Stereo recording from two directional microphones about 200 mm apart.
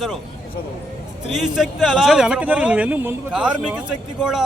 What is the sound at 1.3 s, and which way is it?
A man's voice, centre (ahead or behind).